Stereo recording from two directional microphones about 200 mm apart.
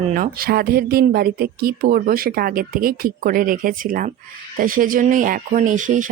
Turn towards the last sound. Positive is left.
turn(degrees=-40)  # may be behind; listen again after turning